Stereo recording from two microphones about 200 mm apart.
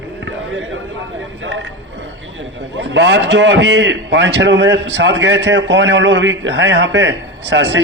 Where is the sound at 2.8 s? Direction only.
65° right (ahead or behind).